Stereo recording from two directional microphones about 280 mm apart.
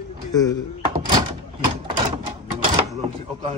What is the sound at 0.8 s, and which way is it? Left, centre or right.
Door, centre.